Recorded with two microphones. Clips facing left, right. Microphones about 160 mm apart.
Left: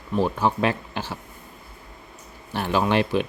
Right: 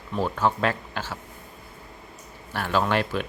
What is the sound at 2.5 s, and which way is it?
Speech, 20° left (ahead or behind).